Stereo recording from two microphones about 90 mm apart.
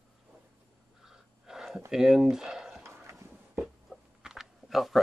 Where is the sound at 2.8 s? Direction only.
35° right (ahead or behind).